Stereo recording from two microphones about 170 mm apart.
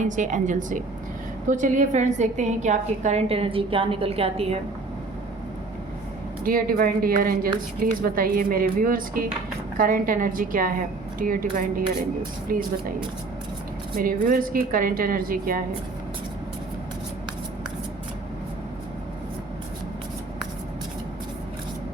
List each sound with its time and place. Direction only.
0.0 s a woman's voice: 45° right (ahead or behind)
6.4 s a woman's voice: 55° right (ahead or behind)
13.9 s a woman's voice: 55° right (ahead or behind)